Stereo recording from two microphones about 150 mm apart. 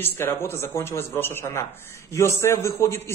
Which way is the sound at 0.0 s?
15° left (ahead or behind).